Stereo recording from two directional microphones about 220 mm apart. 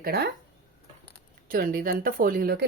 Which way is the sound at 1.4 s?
40° right (ahead or behind).